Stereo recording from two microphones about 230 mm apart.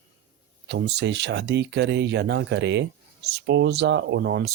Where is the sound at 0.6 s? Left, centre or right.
Right.